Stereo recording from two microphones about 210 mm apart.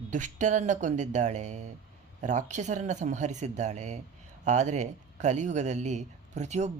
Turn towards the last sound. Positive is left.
turn(degrees=-35)  # may be behind; listen again after turning